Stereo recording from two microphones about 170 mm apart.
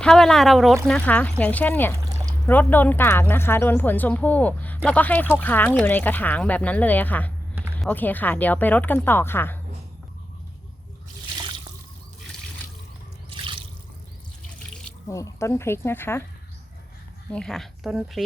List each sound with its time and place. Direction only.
0.0 s a woman's voice: 5° left (ahead or behind)
13.3 s drip: 30° right (ahead or behind)
15.0 s a woman's voice: 20° left (ahead or behind)
17.3 s speech: 5° left (ahead or behind)